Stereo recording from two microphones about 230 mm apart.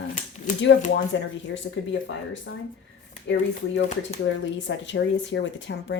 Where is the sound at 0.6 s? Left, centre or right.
Left.